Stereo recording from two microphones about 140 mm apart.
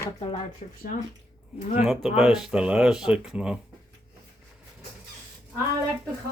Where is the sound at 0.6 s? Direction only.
60° left (ahead or behind).